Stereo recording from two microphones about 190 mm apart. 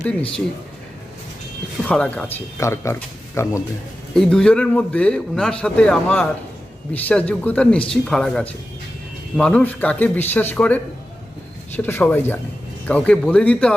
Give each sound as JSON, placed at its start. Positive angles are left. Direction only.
{"t": 0.2, "sound": "a man's voice", "side_deg": 30}
{"t": 1.9, "sound": "a man's voice", "side_deg": 5}
{"t": 11.8, "sound": "speech", "side_deg": 10}